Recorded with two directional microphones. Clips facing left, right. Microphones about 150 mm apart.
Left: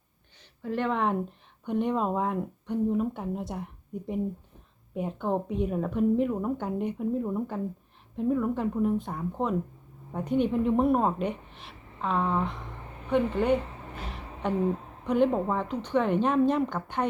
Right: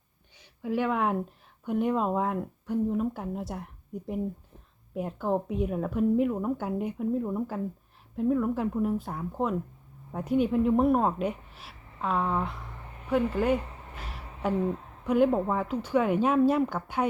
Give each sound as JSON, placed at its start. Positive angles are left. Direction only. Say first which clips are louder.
{"t": 0.3, "sound": "a woman's voice", "louder": "right 2 dB", "side_deg": -10}